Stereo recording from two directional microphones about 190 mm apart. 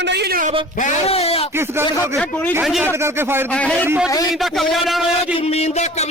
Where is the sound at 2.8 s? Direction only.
15° right (ahead or behind).